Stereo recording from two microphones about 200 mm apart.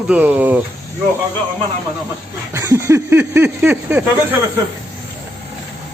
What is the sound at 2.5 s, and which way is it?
A man's voice, 15° right (ahead or behind).